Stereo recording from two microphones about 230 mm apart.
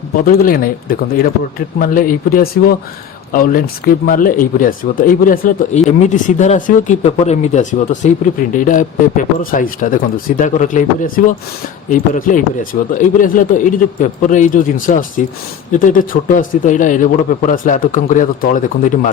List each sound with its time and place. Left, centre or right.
0.2 s speech: left